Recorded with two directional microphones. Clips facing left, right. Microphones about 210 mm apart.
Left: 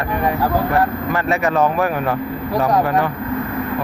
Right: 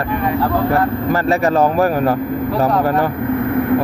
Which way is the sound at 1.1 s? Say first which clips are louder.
Right 5 dB; 35° right (ahead or behind).